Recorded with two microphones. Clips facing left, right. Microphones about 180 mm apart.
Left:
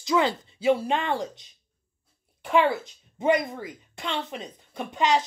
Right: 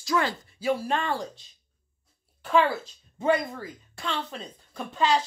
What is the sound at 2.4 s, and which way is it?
Speech, 15° left (ahead or behind).